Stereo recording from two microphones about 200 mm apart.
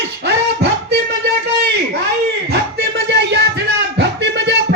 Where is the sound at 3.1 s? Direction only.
55° right (ahead or behind).